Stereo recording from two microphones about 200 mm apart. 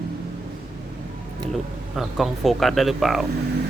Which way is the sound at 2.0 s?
Centre (ahead or behind).